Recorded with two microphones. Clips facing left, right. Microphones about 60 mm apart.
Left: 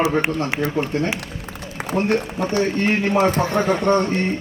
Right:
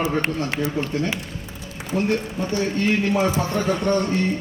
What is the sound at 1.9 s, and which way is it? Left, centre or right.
A man's voice, left.